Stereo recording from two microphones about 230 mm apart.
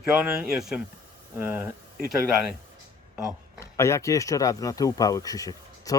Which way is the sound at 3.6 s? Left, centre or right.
Centre.